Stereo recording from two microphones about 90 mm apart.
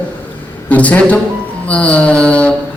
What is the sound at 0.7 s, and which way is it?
A man's voice, 15° left (ahead or behind).